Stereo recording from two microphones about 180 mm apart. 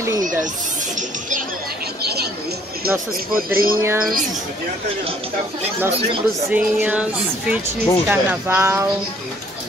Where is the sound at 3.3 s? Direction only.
55° right (ahead or behind).